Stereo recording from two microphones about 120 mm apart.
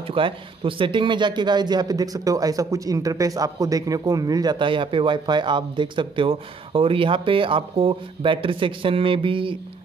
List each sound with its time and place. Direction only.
0.0 s speech: 45° right (ahead or behind)